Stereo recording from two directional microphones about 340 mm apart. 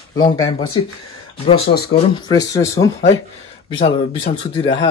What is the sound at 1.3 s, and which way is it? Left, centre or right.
Speech, centre.